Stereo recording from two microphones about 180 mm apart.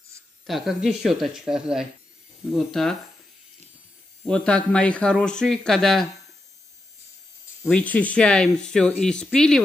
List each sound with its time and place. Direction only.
0.5 s speech: centre (ahead or behind)
4.3 s speech: 5° left (ahead or behind)
7.6 s speech: 5° left (ahead or behind)